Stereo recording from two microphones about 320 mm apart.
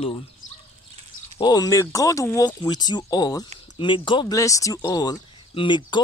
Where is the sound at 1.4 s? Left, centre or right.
Centre.